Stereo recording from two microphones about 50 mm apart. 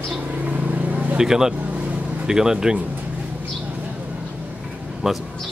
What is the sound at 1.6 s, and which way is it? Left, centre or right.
Vehicle, right.